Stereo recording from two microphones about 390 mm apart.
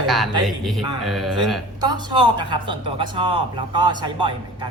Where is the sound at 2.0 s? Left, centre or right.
Right.